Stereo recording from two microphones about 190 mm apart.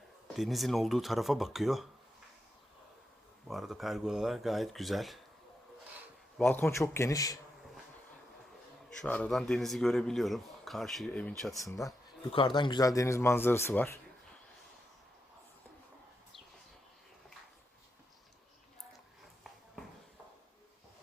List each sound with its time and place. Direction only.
0.3 s speech: centre (ahead or behind)
3.5 s speech: centre (ahead or behind)
6.4 s a man's voice: 10° left (ahead or behind)
9.0 s speech: 5° left (ahead or behind)
11.5 s a man's voice: 15° left (ahead or behind)